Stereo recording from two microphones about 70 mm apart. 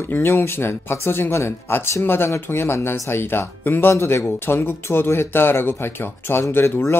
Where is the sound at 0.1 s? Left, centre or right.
Left.